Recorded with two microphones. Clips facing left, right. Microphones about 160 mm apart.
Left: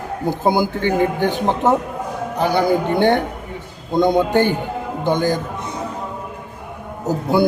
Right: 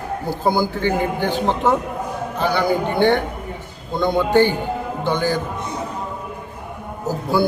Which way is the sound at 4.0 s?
20° left (ahead or behind).